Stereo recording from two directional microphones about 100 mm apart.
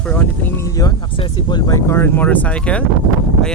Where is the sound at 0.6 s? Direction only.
35° left (ahead or behind).